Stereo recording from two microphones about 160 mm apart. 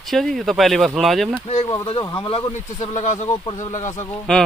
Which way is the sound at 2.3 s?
45° left (ahead or behind).